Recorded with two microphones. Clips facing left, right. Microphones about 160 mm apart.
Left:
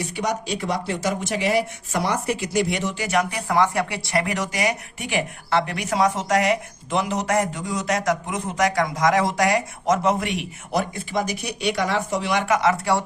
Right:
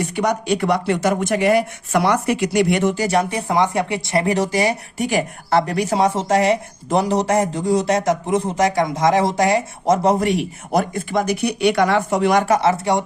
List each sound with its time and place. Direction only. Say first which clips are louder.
0.0 s speech: right 5 dB; 55° right (ahead or behind)
3.0 s speech: right 4 dB; 30° right (ahead or behind)